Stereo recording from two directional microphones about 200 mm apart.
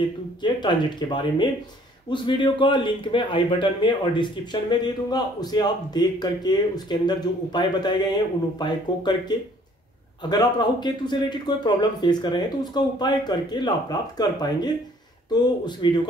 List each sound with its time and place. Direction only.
0.4 s speech: 20° left (ahead or behind)
10.3 s speech: 20° left (ahead or behind)